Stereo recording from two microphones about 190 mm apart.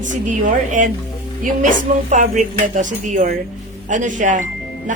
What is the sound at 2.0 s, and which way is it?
A woman's voice, 40° right (ahead or behind).